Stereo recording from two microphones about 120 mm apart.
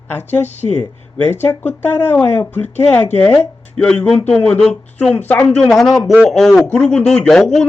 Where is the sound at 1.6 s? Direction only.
15° left (ahead or behind).